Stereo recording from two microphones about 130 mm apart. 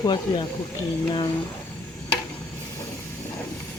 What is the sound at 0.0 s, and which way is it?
Speech, 35° left (ahead or behind).